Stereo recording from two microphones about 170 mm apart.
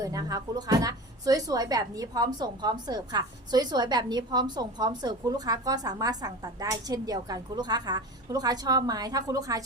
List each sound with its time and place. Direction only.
0.0 s a woman's voice: 20° right (ahead or behind)